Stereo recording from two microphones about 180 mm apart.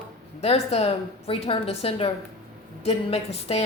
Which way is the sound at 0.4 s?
35° left (ahead or behind).